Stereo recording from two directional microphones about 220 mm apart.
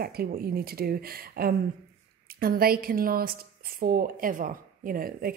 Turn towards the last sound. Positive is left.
turn(degrees=-40)  # may be behind; listen again after turning